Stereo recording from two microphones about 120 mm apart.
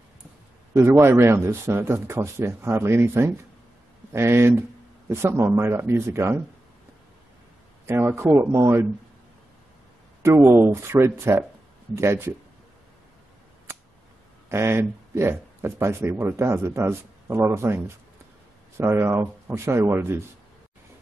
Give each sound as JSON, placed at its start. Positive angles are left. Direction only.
{"t": 0.7, "sound": "speech", "side_deg": -20}
{"t": 7.8, "sound": "speech", "side_deg": -20}
{"t": 10.2, "sound": "speech", "side_deg": -20}
{"t": 14.5, "sound": "speech", "side_deg": -20}